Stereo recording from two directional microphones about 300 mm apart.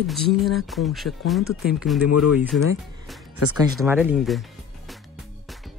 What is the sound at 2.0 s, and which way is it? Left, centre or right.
Speech, left.